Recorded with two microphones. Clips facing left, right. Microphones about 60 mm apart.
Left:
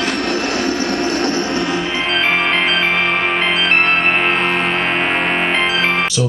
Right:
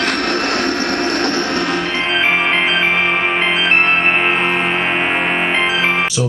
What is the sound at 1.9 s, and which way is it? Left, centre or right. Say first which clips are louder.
Music: right 1 dB; centre.